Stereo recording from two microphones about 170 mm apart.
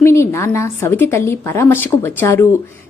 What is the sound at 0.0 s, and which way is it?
A woman's voice, 15° left (ahead or behind).